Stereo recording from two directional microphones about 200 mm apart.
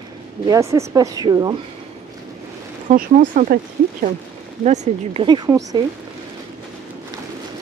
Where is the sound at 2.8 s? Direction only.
40° right (ahead or behind).